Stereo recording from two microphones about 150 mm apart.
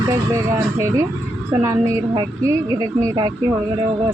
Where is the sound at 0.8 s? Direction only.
20° right (ahead or behind).